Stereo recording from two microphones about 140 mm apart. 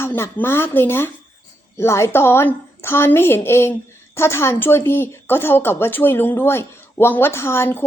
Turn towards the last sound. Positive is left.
turn(degrees=15)  # may be behind; listen again after turning